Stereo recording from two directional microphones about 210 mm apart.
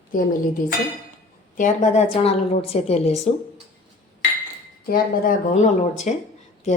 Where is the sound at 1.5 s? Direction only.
35° left (ahead or behind).